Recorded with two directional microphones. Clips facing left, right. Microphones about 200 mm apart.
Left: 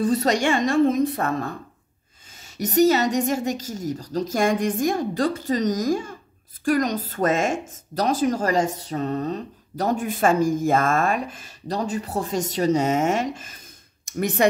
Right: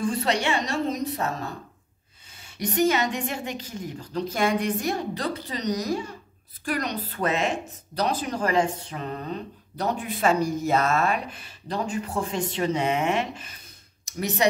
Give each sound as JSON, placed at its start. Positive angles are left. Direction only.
{"t": 0.0, "sound": "speech", "side_deg": 40}
{"t": 2.4, "sound": "speech", "side_deg": 40}